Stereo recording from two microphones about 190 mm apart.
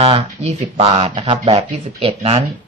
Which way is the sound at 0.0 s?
35° right (ahead or behind).